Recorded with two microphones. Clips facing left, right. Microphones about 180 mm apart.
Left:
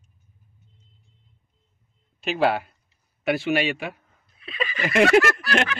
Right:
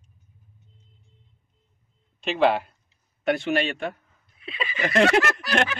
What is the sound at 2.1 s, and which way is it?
A man's voice, 5° left (ahead or behind).